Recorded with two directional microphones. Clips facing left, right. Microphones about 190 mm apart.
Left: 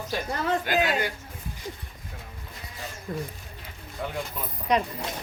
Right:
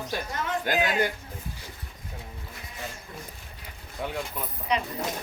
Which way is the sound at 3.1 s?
50° left (ahead or behind).